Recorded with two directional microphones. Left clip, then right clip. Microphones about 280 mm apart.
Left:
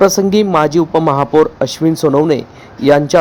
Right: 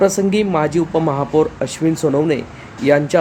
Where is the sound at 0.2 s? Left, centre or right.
Left.